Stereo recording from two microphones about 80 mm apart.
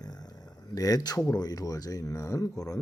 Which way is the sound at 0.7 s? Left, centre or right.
Left.